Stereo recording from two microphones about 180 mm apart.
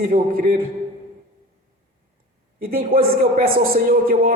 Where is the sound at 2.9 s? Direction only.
55° right (ahead or behind).